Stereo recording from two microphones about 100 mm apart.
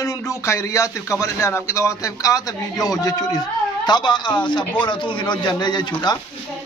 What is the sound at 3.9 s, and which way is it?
A man's voice, 50° left (ahead or behind).